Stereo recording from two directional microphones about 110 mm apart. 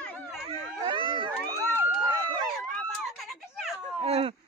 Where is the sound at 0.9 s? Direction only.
50° right (ahead or behind).